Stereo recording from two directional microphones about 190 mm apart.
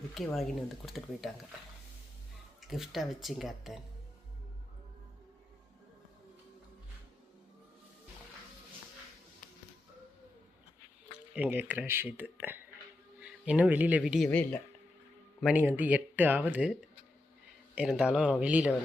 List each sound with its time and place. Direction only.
0.1 s speech: centre (ahead or behind)
2.6 s speech: centre (ahead or behind)
11.3 s speech: 10° right (ahead or behind)
14.3 s speech: 10° left (ahead or behind)
15.4 s speech: 5° right (ahead or behind)
17.7 s speech: 5° right (ahead or behind)